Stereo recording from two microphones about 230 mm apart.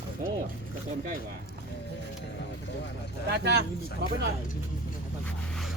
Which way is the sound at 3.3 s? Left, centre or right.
Right.